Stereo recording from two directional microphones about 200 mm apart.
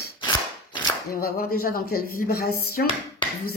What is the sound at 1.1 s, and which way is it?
Speech, 50° left (ahead or behind).